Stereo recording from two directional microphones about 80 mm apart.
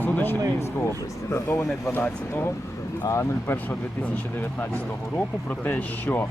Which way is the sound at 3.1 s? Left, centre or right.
Left.